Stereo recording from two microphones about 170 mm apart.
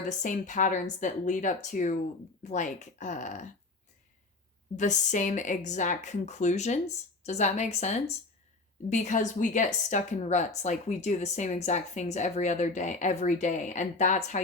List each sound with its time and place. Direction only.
0.0 s a woman's voice: 45° left (ahead or behind)
4.8 s a woman's voice: 45° left (ahead or behind)